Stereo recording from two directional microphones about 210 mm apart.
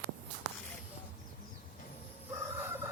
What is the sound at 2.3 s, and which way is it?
Chicken, 10° right (ahead or behind).